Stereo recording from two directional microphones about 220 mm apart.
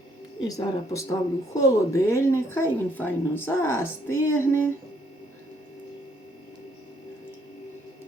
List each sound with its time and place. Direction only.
0.3 s speech: 15° left (ahead or behind)